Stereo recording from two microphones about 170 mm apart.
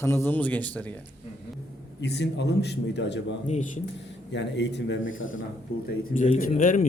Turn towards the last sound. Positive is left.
turn(degrees=45)  # may be behind; listen again after turning